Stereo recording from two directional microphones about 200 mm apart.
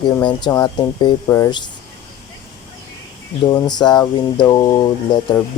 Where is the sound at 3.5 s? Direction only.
20° left (ahead or behind).